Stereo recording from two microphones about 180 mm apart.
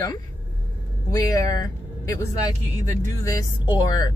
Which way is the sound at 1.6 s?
15° left (ahead or behind).